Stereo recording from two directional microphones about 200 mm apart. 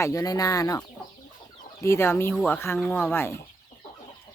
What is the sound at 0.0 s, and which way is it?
Speech, 15° left (ahead or behind).